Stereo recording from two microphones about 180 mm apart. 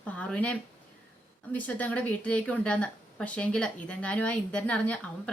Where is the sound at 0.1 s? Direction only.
10° left (ahead or behind).